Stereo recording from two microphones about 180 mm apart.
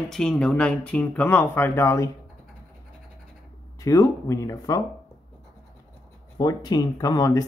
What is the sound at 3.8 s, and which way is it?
Speech, 15° left (ahead or behind).